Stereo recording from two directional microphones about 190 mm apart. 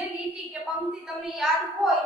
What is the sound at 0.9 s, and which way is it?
A woman's voice, centre (ahead or behind).